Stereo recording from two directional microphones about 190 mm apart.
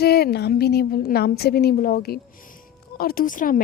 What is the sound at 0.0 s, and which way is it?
A woman's voice, 55° left (ahead or behind).